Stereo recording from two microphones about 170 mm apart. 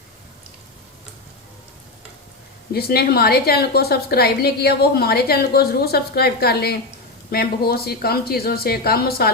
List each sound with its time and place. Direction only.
2.7 s a woman's voice: 65° left (ahead or behind)